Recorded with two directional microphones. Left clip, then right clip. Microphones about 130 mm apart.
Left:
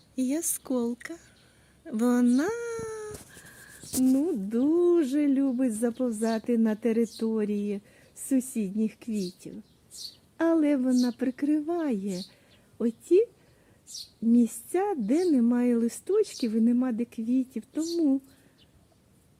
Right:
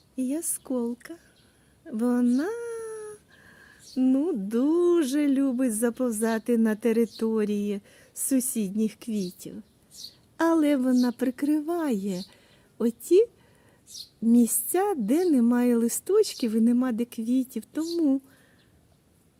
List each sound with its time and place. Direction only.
0.2 s speech: 10° right (ahead or behind)
1.9 s a sound: 5° right (ahead or behind)
4.0 s speech: 20° right (ahead or behind)
13.9 s a woman's voice: 20° left (ahead or behind)
14.3 s speech: 30° right (ahead or behind)